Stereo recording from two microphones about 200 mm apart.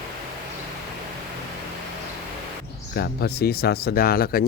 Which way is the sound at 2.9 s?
50° left (ahead or behind).